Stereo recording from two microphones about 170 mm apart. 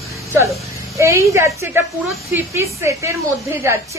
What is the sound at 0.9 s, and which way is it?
A woman's voice, 15° right (ahead or behind).